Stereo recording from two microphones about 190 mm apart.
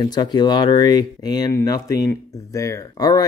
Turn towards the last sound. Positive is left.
turn(degrees=20)  # may be behind; listen again after turning